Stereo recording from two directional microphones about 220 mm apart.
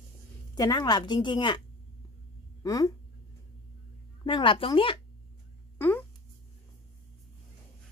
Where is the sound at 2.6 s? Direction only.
15° left (ahead or behind).